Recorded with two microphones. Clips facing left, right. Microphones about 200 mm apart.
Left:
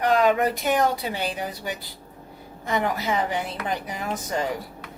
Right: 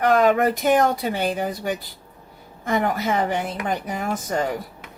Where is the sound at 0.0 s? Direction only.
50° right (ahead or behind).